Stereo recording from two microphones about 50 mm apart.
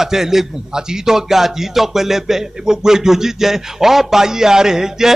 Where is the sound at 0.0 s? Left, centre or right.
Centre.